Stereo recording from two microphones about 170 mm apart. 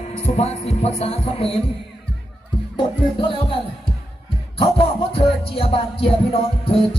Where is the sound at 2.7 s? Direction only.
30° left (ahead or behind).